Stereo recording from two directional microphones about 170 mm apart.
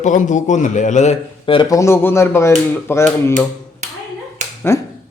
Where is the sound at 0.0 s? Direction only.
45° left (ahead or behind).